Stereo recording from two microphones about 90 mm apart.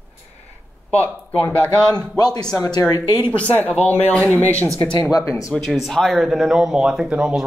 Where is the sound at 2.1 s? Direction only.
45° left (ahead or behind).